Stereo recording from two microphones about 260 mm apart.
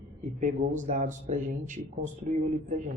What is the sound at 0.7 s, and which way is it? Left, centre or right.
Speech, right.